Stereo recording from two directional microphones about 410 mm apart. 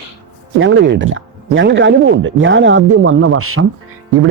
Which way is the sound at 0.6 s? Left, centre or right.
Right.